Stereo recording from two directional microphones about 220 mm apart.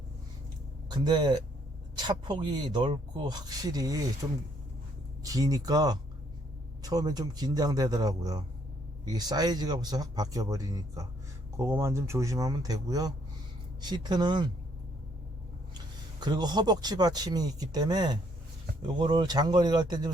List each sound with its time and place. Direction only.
0.9 s speech: 20° right (ahead or behind)
16.2 s speech: 20° right (ahead or behind)